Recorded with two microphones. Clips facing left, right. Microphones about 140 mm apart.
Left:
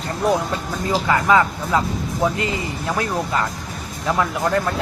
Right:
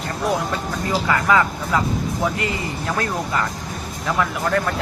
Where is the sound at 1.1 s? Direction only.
20° left (ahead or behind).